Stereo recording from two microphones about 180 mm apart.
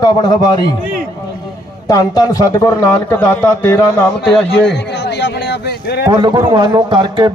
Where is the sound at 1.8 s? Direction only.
20° left (ahead or behind).